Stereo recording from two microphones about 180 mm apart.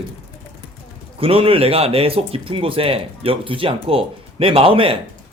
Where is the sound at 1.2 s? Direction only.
30° right (ahead or behind).